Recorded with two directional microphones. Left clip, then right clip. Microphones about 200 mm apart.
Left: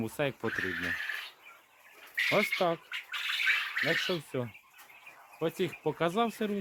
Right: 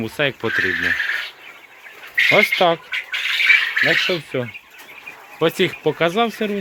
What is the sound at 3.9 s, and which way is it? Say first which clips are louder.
Speech: right 13 dB; 35° left (ahead or behind).